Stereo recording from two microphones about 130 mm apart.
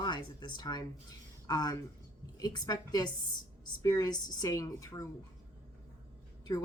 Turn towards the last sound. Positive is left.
turn(degrees=30)  # may be behind; listen again after turning